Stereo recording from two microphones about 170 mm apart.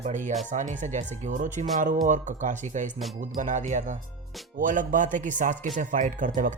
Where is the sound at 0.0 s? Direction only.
45° right (ahead or behind).